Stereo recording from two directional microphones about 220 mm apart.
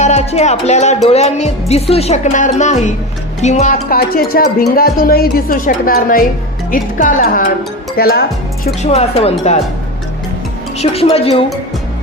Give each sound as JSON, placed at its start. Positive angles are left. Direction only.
{"t": 0.0, "sound": "music", "side_deg": 30}
{"t": 1.0, "sound": "speech", "side_deg": 30}
{"t": 8.6, "sound": "speech", "side_deg": 30}
{"t": 10.8, "sound": "speech", "side_deg": 25}